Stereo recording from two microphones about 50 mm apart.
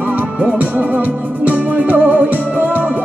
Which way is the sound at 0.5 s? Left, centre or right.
Right.